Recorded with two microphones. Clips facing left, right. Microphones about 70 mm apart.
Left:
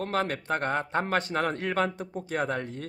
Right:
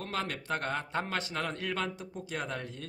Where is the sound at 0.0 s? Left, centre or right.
Left.